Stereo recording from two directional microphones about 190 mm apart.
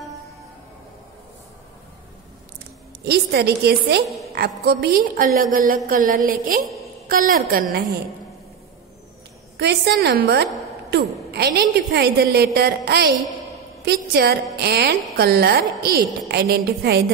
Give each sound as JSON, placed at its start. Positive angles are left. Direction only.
{"t": 3.1, "sound": "a woman's voice", "side_deg": -60}
{"t": 9.6, "sound": "a woman's voice", "side_deg": -60}